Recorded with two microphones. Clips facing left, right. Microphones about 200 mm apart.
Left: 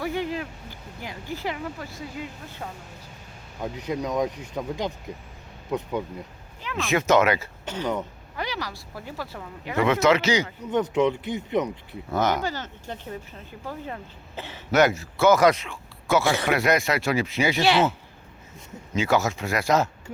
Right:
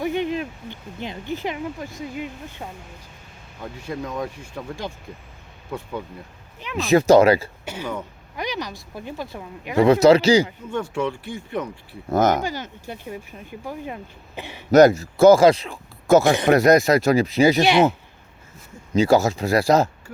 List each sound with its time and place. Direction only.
0.0 s speech: 20° right (ahead or behind)
3.6 s speech: 15° left (ahead or behind)
6.7 s speech: 35° right (ahead or behind)
7.6 s speech: 10° right (ahead or behind)
9.7 s speech: 35° right (ahead or behind)
10.7 s speech: 20° left (ahead or behind)
12.1 s speech: 45° right (ahead or behind)
12.4 s speech: 15° right (ahead or behind)
14.7 s speech: 35° right (ahead or behind)
16.2 s speech: 15° right (ahead or behind)
16.5 s speech: 40° right (ahead or behind)
17.6 s speech: 15° right (ahead or behind)
18.9 s speech: 35° right (ahead or behind)